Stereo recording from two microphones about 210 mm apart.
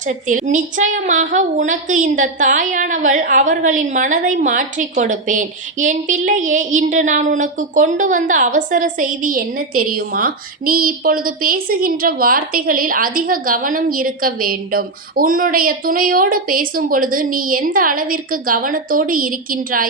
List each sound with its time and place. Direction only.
0.1 s a woman's voice: 35° right (ahead or behind)